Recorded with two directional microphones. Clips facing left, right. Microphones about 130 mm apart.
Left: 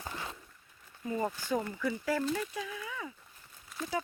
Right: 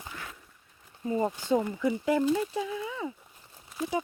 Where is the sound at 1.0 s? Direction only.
25° right (ahead or behind).